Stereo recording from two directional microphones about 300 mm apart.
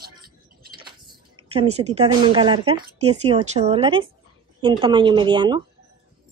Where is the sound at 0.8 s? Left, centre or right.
Centre.